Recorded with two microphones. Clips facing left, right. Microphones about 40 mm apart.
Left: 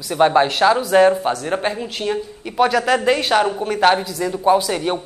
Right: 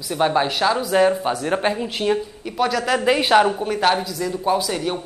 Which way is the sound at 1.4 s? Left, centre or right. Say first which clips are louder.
Right 1 dB; centre.